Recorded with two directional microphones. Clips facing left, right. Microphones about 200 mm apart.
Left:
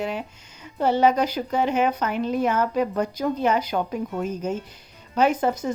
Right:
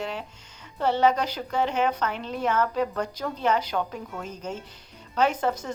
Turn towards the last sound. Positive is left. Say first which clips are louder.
# left 4 dB
turn(degrees=15)  # may be behind; listen again after turning